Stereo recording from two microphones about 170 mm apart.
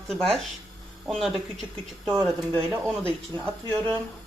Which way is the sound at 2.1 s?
20° right (ahead or behind).